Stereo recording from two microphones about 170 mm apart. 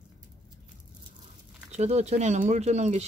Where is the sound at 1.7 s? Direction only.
40° right (ahead or behind).